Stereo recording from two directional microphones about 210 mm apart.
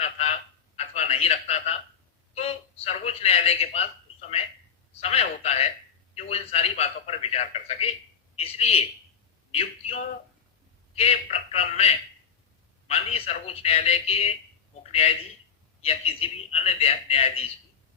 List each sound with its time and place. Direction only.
0.0 s honk: 30° left (ahead or behind)
0.8 s a sound: 30° left (ahead or behind)
2.3 s a man's voice: 30° left (ahead or behind)
15.8 s a man's voice: 30° left (ahead or behind)